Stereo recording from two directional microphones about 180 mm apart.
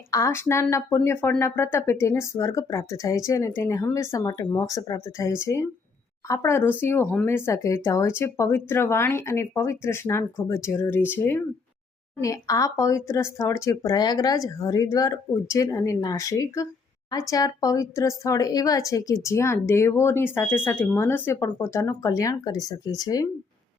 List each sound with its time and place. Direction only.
0.1 s a woman's voice: 15° left (ahead or behind)
4.3 s a woman's voice: 25° left (ahead or behind)